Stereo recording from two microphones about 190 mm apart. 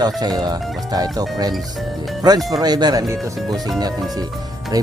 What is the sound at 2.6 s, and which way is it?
Speech, 20° right (ahead or behind).